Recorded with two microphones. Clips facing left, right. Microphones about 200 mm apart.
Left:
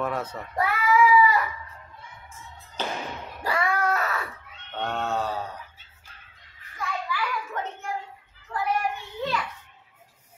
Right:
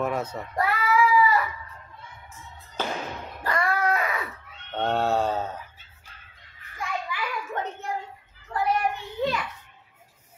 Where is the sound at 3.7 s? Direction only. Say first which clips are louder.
Right 1 dB; 10° right (ahead or behind).